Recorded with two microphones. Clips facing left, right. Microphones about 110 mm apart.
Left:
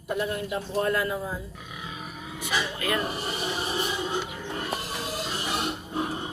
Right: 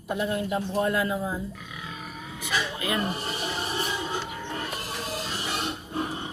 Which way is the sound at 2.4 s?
15° left (ahead or behind).